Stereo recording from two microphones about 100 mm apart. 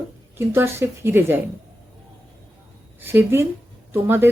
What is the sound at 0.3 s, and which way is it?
Speech, 25° right (ahead or behind).